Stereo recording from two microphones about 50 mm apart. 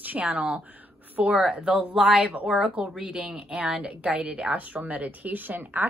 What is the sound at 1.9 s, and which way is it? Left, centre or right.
A woman's voice, centre.